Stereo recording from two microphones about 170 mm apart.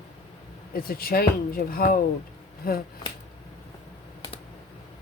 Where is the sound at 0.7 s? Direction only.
60° left (ahead or behind).